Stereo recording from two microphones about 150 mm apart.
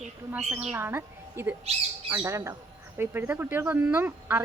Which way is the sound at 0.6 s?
10° right (ahead or behind).